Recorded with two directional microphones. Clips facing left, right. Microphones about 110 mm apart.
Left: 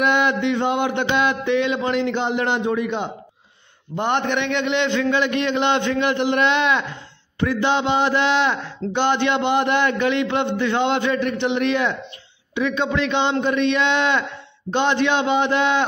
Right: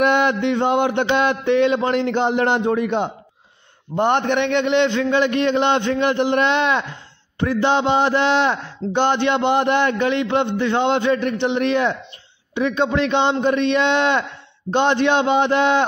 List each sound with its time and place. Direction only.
0.0 s a man's voice: 40° right (ahead or behind)